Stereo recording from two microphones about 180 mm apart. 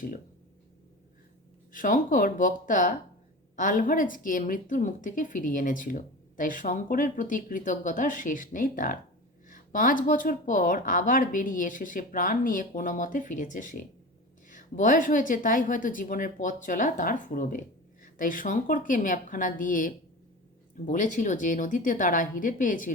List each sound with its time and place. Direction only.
1.7 s a woman's voice: 50° left (ahead or behind)